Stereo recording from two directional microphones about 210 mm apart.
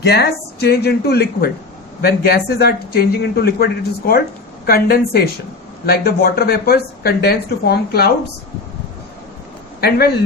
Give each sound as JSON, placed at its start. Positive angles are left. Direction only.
{"t": 0.0, "sound": "speech", "side_deg": 50}